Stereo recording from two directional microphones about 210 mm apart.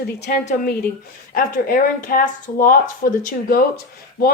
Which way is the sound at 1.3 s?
45° left (ahead or behind).